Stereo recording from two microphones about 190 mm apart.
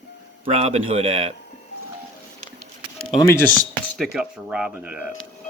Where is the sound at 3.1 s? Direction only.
15° left (ahead or behind).